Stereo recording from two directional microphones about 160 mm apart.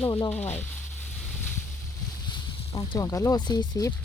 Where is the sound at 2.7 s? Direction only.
25° left (ahead or behind).